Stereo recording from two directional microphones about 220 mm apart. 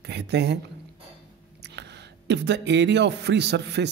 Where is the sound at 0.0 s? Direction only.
50° right (ahead or behind).